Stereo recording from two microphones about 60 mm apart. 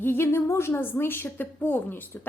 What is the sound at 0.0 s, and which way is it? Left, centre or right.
A woman's voice, left.